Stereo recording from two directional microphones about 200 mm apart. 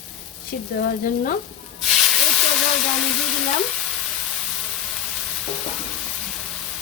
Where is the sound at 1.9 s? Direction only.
Centre (ahead or behind).